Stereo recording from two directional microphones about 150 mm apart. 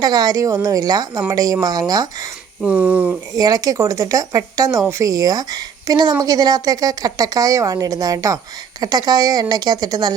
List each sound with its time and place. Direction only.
0.0 s speech: 25° right (ahead or behind)
2.6 s a sound: 10° right (ahead or behind)
3.3 s speech: 25° right (ahead or behind)